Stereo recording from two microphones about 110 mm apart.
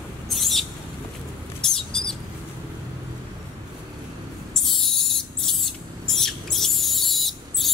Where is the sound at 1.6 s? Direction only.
5° left (ahead or behind).